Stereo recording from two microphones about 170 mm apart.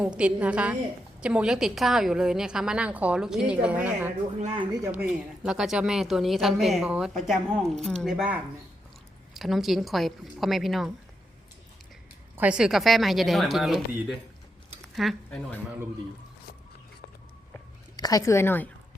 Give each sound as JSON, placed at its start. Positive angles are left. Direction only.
{"t": 0.0, "sound": "a woman's voice", "side_deg": -5}
{"t": 5.4, "sound": "a woman's voice", "side_deg": -5}
{"t": 12.4, "sound": "a woman's voice", "side_deg": -5}
{"t": 17.9, "sound": "a woman's voice", "side_deg": 20}